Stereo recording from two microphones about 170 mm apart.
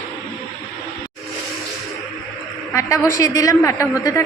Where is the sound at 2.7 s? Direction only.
20° left (ahead or behind).